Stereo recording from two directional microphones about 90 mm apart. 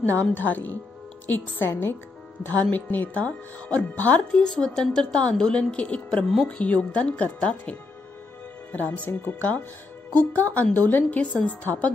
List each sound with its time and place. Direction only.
0.3 s speech: 20° left (ahead or behind)
8.7 s speech: 20° left (ahead or behind)